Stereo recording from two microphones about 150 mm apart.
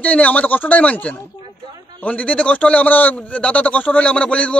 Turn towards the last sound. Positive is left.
turn(degrees=5)  # may be behind; listen again after turning